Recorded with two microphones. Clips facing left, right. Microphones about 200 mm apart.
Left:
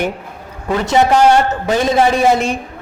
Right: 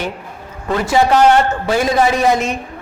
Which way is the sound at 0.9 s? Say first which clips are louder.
Left 1 dB; 20° left (ahead or behind).